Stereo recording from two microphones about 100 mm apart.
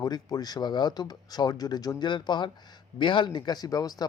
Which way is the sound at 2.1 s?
50° left (ahead or behind).